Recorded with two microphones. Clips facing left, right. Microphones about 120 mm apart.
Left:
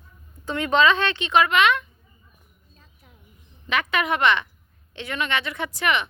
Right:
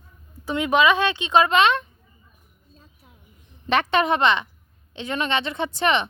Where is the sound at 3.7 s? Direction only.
35° right (ahead or behind).